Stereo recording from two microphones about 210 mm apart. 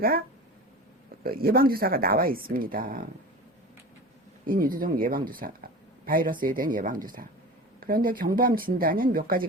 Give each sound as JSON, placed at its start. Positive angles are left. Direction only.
{"t": 1.2, "sound": "speech", "side_deg": -45}
{"t": 4.4, "sound": "speech", "side_deg": -40}